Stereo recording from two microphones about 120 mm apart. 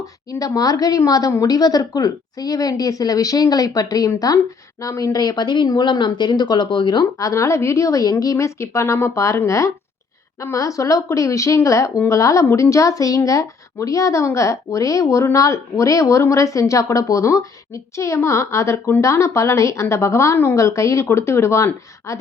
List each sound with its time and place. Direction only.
0.0 s a woman's voice: 30° left (ahead or behind)